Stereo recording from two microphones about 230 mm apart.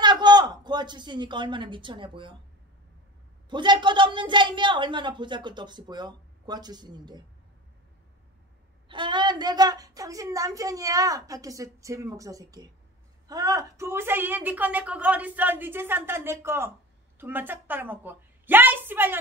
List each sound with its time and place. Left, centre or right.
0.0 s speech: centre
3.4 s a woman's voice: centre
8.8 s a woman's voice: right